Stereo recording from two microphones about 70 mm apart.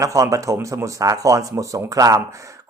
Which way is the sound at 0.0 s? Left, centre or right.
Right.